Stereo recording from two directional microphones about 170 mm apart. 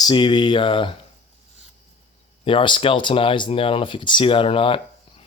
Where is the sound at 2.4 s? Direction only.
30° left (ahead or behind).